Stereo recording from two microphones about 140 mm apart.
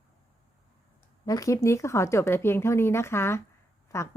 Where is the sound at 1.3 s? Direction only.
25° left (ahead or behind).